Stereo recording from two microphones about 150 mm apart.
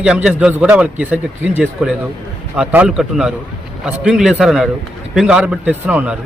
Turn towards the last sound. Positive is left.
turn(degrees=-10)  # may be behind; listen again after turning